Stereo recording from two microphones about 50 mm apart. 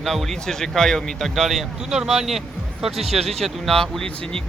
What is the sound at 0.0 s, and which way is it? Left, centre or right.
Speech, centre.